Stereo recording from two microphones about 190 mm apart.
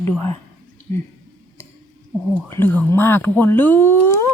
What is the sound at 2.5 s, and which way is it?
Speech, 10° left (ahead or behind).